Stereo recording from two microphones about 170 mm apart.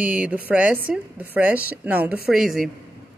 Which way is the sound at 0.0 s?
10° right (ahead or behind).